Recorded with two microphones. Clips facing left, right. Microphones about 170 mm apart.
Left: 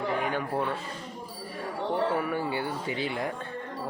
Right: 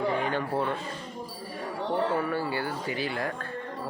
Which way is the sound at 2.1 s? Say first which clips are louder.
Even; 15° left (ahead or behind).